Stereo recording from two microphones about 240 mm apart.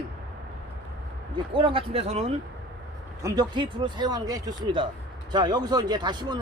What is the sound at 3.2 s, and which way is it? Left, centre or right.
Speech, centre.